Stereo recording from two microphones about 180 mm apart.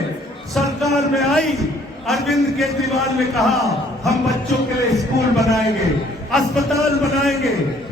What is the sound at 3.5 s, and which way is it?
Speech, 20° right (ahead or behind).